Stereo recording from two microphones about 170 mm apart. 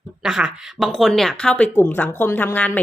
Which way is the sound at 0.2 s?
5° right (ahead or behind).